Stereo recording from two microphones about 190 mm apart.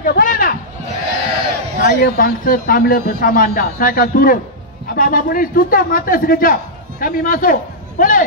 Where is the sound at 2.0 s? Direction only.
50° left (ahead or behind).